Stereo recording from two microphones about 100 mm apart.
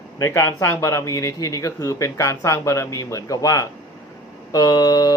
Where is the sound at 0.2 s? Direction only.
25° left (ahead or behind).